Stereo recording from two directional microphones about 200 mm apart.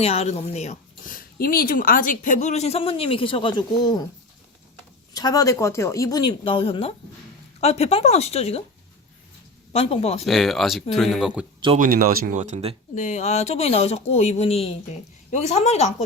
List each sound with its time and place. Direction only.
0.0 s speech: 30° left (ahead or behind)
5.1 s speech: 20° left (ahead or behind)
9.7 s speech: 30° left (ahead or behind)
10.2 s speech: centre (ahead or behind)
11.8 s speech: 45° right (ahead or behind)
13.0 s speech: 35° left (ahead or behind)